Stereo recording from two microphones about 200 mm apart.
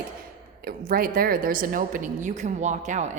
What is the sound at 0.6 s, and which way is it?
A woman's voice, 45° right (ahead or behind).